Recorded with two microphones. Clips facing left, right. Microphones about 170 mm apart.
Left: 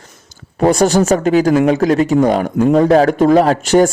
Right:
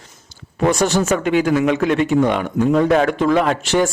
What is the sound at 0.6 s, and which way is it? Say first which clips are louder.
Speech: left 5 dB; 35° left (ahead or behind).